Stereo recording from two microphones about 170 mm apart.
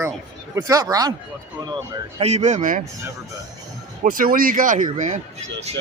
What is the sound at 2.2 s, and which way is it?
Speech, 40° right (ahead or behind).